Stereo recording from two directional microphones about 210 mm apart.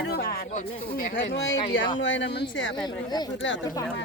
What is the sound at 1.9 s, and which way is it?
Speech, 60° left (ahead or behind).